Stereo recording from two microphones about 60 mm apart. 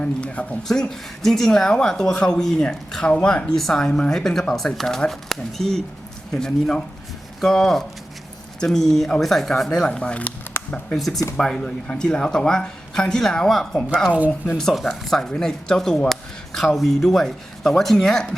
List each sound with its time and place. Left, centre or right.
0.0 s speech: centre
0.7 s speech: centre
3.5 s speech: centre
10.5 s a sound: left
10.9 s speech: centre